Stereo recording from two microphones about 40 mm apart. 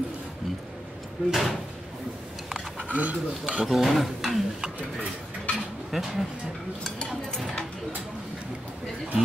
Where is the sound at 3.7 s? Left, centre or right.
Centre.